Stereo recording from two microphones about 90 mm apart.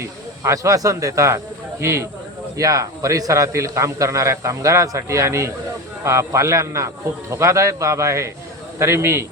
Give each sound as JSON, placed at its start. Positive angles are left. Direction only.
{"t": 0.0, "sound": "a man's voice", "side_deg": -35}